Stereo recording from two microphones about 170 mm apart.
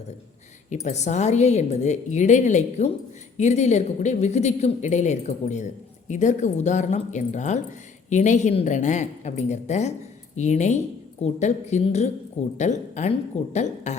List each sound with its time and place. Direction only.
0.7 s a woman's voice: 40° left (ahead or behind)